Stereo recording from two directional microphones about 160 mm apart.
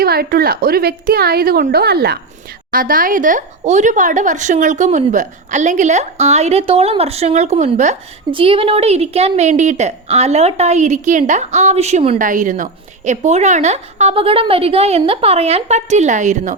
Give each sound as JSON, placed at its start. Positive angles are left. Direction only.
{"t": 0.0, "sound": "a woman's voice", "side_deg": -70}
{"t": 2.7, "sound": "a woman's voice", "side_deg": -60}
{"t": 8.3, "sound": "a woman's voice", "side_deg": -35}